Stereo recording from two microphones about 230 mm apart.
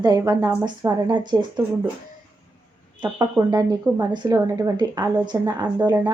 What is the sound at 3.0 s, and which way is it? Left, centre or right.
A woman's voice, centre.